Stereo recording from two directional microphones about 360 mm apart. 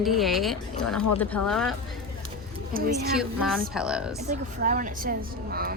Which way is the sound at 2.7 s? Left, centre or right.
Right.